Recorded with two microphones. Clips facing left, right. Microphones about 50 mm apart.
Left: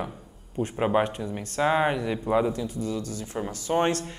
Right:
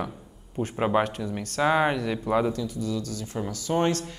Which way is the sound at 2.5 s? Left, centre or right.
Left.